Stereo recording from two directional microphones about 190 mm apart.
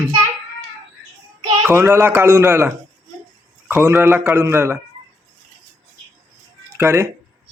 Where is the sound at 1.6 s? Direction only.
10° right (ahead or behind).